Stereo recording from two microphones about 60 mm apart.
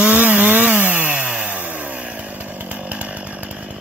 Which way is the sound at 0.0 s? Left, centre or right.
Right.